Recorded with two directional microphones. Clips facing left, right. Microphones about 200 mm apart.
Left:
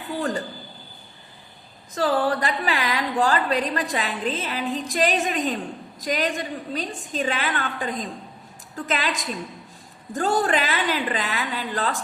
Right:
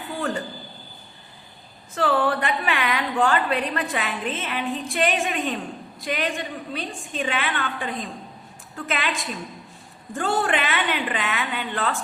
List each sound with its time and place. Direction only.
2.0 s a woman's voice: 35° left (ahead or behind)